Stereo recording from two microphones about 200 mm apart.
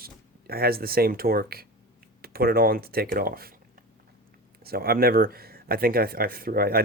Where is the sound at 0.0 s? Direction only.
50° right (ahead or behind).